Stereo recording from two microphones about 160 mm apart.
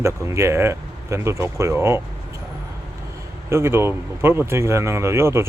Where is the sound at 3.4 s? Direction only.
15° right (ahead or behind).